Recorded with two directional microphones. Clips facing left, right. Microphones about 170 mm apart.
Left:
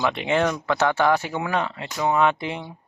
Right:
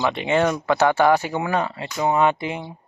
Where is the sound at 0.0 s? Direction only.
Centre (ahead or behind).